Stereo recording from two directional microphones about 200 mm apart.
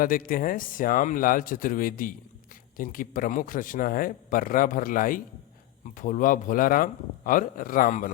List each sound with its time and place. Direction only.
0.0 s speech: 45° left (ahead or behind)